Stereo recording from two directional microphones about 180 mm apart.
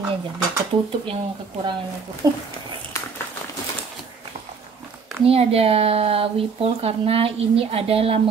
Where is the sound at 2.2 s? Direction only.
20° right (ahead or behind).